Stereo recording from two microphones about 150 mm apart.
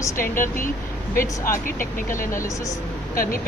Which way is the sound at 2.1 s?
20° left (ahead or behind).